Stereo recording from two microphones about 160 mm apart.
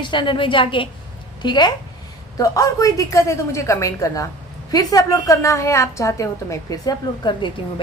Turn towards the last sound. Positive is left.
turn(degrees=25)  # may be behind; listen again after turning